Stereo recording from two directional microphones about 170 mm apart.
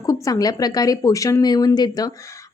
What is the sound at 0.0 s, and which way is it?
Speech, 20° left (ahead or behind).